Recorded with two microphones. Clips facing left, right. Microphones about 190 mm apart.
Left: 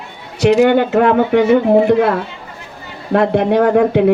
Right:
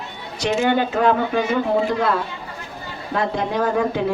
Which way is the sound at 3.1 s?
65° left (ahead or behind).